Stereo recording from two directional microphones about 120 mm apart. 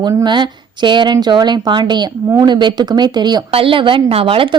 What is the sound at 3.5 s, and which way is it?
A woman's voice, 50° right (ahead or behind).